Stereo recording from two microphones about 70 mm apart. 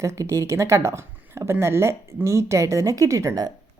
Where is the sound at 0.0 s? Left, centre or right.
Right.